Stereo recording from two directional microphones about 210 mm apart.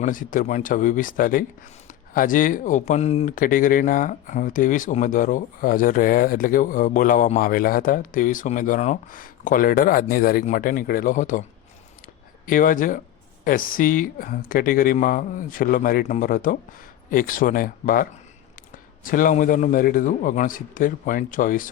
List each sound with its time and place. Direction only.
0.0 s speech: 40° left (ahead or behind)
12.0 s a sound: 40° left (ahead or behind)
13.4 s speech: 40° left (ahead or behind)